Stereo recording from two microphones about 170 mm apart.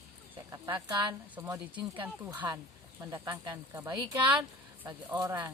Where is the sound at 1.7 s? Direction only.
30° right (ahead or behind).